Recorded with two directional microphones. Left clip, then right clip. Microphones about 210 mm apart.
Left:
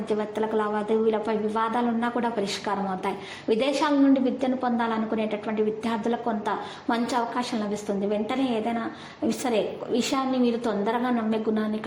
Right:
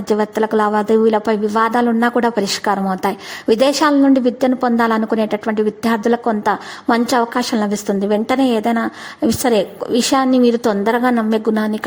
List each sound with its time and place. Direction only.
0.1 s a woman's voice: 40° right (ahead or behind)